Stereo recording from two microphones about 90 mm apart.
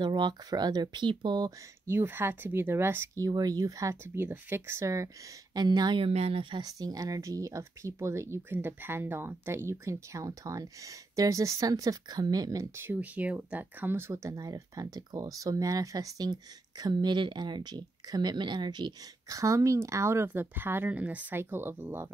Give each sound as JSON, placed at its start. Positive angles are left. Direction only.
{"t": 0.0, "sound": "speech", "side_deg": -55}
{"t": 1.9, "sound": "speech", "side_deg": -25}
{"t": 3.3, "sound": "speech", "side_deg": -45}
{"t": 3.9, "sound": "speech", "side_deg": -25}
{"t": 5.5, "sound": "a woman's voice", "side_deg": -50}
{"t": 5.9, "sound": "speech", "side_deg": -90}
{"t": 6.6, "sound": "speech", "side_deg": -45}
{"t": 12.7, "sound": "speech", "side_deg": -20}
{"t": 19.3, "sound": "speech", "side_deg": -35}